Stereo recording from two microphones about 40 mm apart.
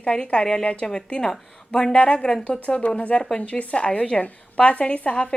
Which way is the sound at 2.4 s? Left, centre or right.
Left.